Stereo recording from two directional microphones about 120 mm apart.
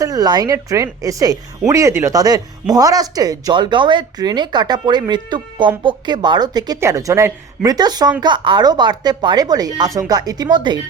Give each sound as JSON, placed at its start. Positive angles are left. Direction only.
{"t": 0.0, "sound": "speech", "side_deg": -30}